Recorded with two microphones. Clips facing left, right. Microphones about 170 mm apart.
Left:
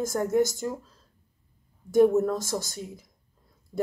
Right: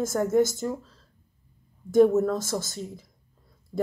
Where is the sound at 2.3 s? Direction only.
15° left (ahead or behind).